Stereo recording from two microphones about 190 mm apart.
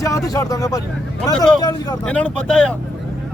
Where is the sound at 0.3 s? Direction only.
15° left (ahead or behind).